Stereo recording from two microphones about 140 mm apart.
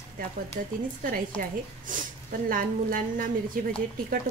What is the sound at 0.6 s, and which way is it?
A woman's voice, 85° right.